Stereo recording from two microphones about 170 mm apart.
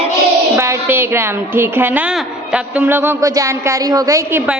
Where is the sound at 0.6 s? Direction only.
15° right (ahead or behind).